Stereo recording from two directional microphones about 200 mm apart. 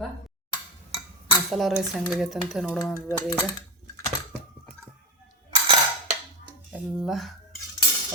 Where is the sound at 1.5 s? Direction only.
Centre (ahead or behind).